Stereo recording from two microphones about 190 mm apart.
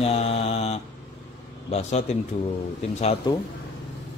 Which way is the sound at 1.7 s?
35° left (ahead or behind).